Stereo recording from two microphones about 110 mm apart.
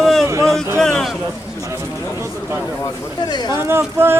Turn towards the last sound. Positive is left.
turn(degrees=-20)  # may be behind; listen again after turning